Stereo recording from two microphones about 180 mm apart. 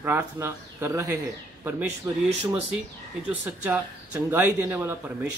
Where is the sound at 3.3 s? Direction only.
10° right (ahead or behind).